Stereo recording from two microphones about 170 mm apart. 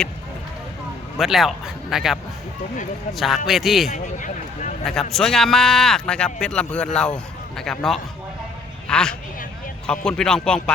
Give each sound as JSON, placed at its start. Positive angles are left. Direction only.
{"t": 1.2, "sound": "speech", "side_deg": 0}
{"t": 3.2, "sound": "speech", "side_deg": 0}
{"t": 3.9, "sound": "speech", "side_deg": 45}
{"t": 4.9, "sound": "speech", "side_deg": 0}